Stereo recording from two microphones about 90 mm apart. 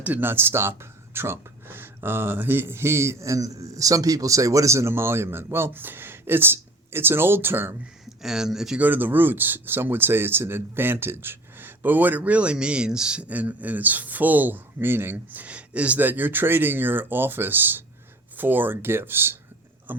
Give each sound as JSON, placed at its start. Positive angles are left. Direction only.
{"t": 0.0, "sound": "speech", "side_deg": -20}
{"t": 8.2, "sound": "speech", "side_deg": -5}
{"t": 8.8, "sound": "speech", "side_deg": -20}